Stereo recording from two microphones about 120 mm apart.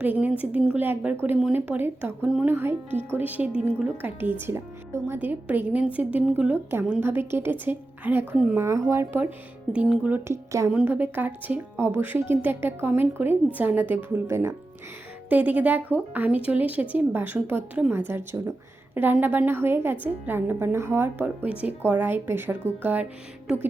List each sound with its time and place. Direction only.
0.0 s a woman's voice: 10° right (ahead or behind)
9.7 s a woman's voice: 10° right (ahead or behind)
10.2 s speech: 25° right (ahead or behind)
10.7 s a woman's voice: 10° right (ahead or behind)